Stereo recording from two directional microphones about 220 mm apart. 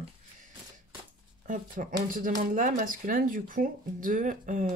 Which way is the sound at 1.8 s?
35° right (ahead or behind).